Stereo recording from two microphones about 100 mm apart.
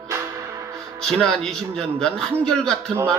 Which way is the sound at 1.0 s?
5° left (ahead or behind).